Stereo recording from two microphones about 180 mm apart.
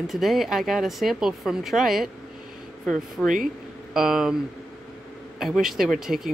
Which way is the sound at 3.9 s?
5° right (ahead or behind).